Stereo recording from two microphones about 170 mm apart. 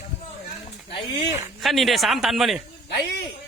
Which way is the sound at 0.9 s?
30° left (ahead or behind).